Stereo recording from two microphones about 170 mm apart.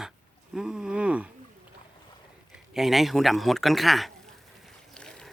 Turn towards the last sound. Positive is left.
turn(degrees=5)  # may be behind; listen again after turning